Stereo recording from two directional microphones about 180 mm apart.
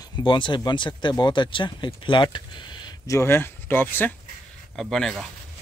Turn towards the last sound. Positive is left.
turn(degrees=0)  # may be behind; listen again after turning